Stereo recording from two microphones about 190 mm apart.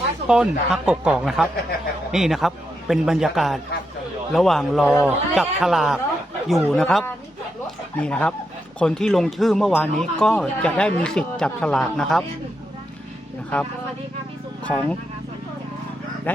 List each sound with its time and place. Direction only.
0.3 s a man's voice: 5° right (ahead or behind)
14.6 s speech: 5° left (ahead or behind)
16.3 s speech: 10° left (ahead or behind)